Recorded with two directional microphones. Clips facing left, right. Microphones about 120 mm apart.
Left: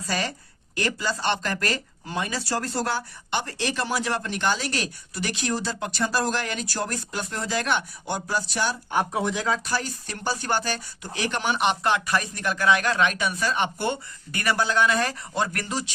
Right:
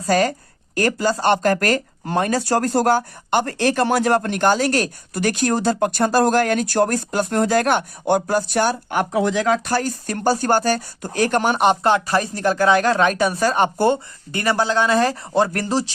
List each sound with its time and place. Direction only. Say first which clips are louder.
0.1 s speech: right 11 dB; 50° right (ahead or behind); by 9.6 s 85° right
9.6 s speech: right 7 dB; 50° right (ahead or behind); by 15.9 s 35° right (ahead or behind)